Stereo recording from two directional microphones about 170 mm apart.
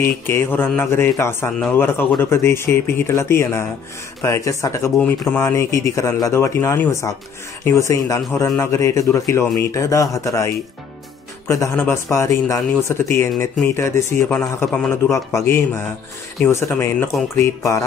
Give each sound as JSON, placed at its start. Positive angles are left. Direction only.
{"t": 0.0, "sound": "speech", "side_deg": 15}
{"t": 15.0, "sound": "speech", "side_deg": 15}